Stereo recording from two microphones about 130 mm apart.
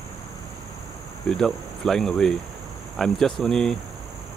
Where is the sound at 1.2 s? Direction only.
5° left (ahead or behind).